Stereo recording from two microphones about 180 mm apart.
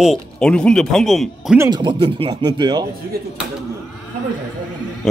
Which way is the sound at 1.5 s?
25° right (ahead or behind).